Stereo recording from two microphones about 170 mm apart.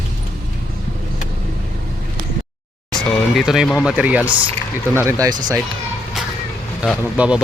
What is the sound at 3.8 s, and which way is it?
Speech, 5° right (ahead or behind).